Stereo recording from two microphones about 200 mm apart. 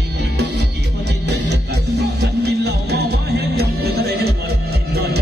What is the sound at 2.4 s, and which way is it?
Music, 55° right (ahead or behind).